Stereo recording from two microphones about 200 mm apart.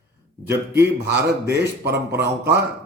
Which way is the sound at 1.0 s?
60° right (ahead or behind).